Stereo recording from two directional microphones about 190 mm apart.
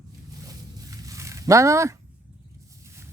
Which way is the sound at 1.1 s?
15° right (ahead or behind).